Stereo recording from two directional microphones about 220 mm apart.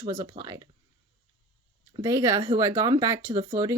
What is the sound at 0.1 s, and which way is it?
Speech, 15° right (ahead or behind).